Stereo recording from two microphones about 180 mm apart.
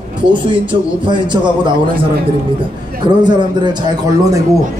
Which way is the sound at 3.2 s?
25° right (ahead or behind).